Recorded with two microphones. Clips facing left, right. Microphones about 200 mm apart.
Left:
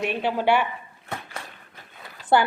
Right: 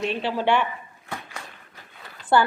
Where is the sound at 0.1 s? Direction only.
55° left (ahead or behind).